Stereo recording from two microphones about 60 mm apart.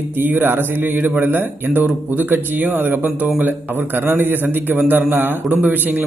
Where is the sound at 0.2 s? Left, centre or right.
Right.